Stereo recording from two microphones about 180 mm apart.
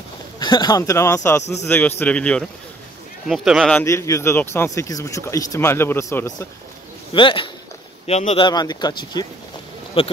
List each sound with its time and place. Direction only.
0.4 s speech: 25° left (ahead or behind); by 3.8 s centre (ahead or behind)
3.8 s speech: 15° left (ahead or behind)
7.2 s speech: 30° left (ahead or behind)
8.5 s speech: 25° left (ahead or behind)